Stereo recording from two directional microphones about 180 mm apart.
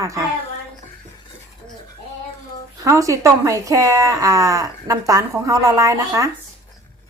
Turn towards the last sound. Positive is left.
turn(degrees=-15)  # may be behind; listen again after turning